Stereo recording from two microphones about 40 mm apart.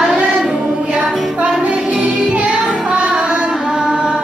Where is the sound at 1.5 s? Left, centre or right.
Right.